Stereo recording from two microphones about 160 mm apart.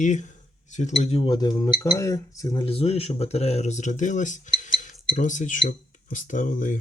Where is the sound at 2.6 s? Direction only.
40° left (ahead or behind).